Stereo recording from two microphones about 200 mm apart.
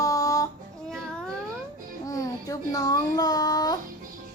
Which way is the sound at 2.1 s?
15° left (ahead or behind).